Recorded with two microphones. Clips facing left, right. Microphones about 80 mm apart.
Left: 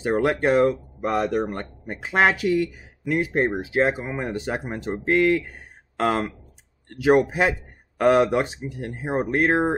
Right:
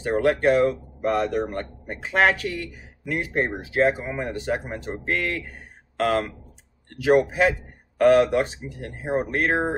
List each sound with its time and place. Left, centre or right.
0.0 s a man's voice: centre